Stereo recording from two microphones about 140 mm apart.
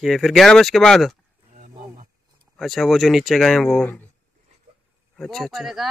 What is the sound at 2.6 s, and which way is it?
Speech, centre (ahead or behind).